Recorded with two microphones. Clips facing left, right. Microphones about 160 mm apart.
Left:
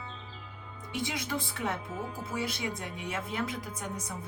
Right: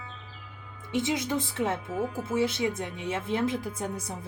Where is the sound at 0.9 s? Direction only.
20° right (ahead or behind).